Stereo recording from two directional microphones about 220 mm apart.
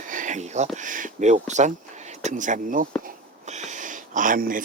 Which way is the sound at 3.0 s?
30° right (ahead or behind).